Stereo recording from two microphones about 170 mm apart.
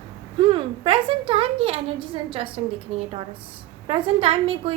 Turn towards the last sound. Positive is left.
turn(degrees=-35)  # may be behind; listen again after turning